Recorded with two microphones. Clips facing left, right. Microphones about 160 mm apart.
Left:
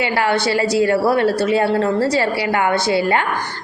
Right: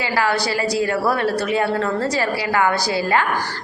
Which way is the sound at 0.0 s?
25° left (ahead or behind).